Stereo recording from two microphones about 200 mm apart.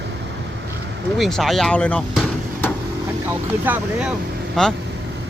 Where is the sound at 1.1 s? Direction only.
Centre (ahead or behind).